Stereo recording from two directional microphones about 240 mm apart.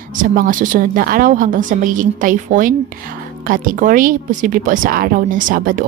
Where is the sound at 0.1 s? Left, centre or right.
Right.